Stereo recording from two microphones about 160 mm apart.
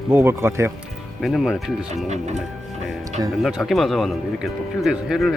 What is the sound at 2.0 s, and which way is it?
Speech, 45° right (ahead or behind).